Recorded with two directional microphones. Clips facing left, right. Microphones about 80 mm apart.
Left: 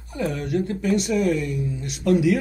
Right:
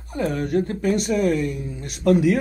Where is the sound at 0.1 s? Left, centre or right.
Right.